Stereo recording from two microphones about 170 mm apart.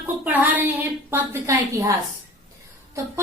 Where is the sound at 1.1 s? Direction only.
15° right (ahead or behind).